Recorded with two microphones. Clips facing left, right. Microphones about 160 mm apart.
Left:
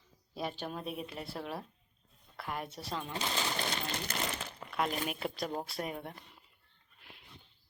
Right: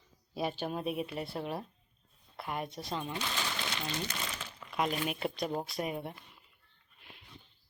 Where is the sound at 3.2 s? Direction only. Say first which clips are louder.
Left 2 dB; 40° left (ahead or behind).